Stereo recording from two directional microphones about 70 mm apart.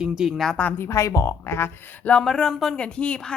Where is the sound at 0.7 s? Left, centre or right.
Left.